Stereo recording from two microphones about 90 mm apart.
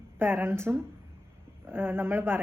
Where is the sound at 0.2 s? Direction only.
25° right (ahead or behind).